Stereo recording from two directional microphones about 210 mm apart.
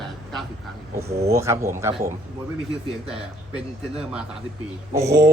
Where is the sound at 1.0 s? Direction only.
30° right (ahead or behind).